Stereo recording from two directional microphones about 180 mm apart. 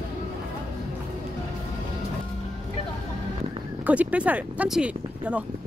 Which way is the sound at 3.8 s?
10° right (ahead or behind).